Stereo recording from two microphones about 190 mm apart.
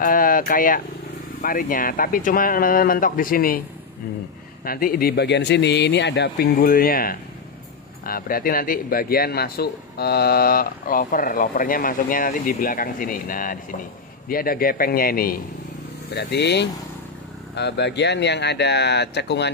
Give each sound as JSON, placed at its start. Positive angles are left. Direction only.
{"t": 0.0, "sound": "a man's voice", "side_deg": 45}
{"t": 4.6, "sound": "a man's voice", "side_deg": 50}
{"t": 16.2, "sound": "speech", "side_deg": 60}